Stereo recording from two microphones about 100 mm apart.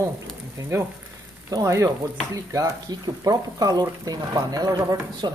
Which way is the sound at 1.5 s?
35° right (ahead or behind).